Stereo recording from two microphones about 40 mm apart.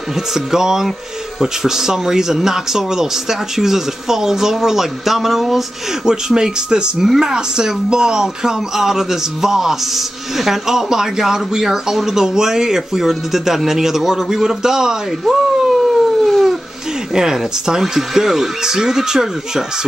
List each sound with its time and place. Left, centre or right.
0.1 s speech: centre
6.0 s speech: centre